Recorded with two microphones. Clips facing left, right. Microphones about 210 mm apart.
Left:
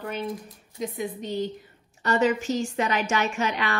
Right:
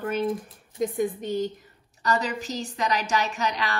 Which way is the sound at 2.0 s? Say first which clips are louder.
Left 4 dB; 35° right (ahead or behind).